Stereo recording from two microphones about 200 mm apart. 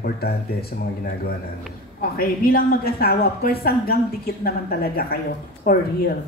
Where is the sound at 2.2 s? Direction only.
50° left (ahead or behind).